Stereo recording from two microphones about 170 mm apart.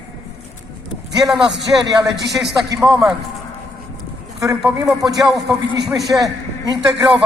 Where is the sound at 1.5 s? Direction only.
90° right.